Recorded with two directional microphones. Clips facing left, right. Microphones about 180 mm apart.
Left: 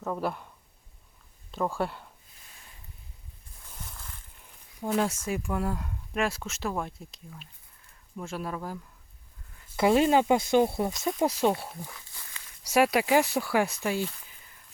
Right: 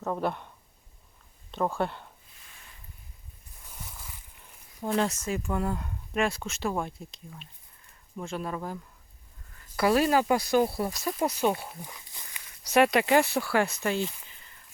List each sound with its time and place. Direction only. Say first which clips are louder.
0.0 s speech: right 1 dB; centre (ahead or behind)
1.8 s speech: right 1 dB; 5° left (ahead or behind)
3.7 s a sound: even; 10° right (ahead or behind)
4.8 s speech: even; 5° left (ahead or behind)
9.7 s speech: left 1 dB; 20° left (ahead or behind)
11.7 s a sound: left 1 dB; 15° right (ahead or behind)
12.6 s speech: right 1 dB; 5° left (ahead or behind)